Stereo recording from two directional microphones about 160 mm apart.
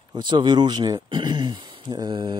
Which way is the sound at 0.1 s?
30° right (ahead or behind).